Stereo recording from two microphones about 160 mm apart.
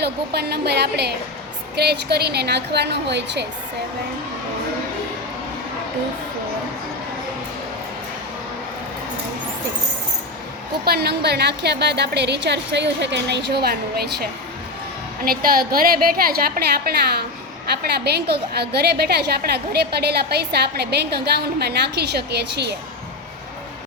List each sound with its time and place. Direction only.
0.0 s a woman's voice: 90° right
10.8 s a woman's voice: 80° right
18.0 s a woman's voice: 90° right